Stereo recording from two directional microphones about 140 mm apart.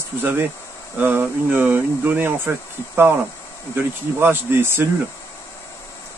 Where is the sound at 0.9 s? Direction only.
15° right (ahead or behind).